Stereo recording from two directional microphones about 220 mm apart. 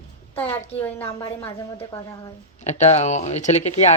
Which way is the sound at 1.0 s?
25° left (ahead or behind).